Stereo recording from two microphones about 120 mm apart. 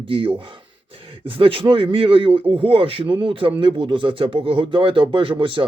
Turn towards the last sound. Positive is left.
turn(degrees=-45)  # may be behind; listen again after turning